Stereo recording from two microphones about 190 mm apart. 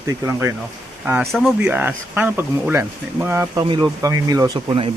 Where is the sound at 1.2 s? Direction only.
Centre (ahead or behind).